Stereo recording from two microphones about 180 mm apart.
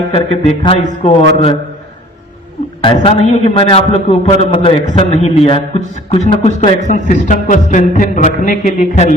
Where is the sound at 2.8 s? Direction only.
35° left (ahead or behind).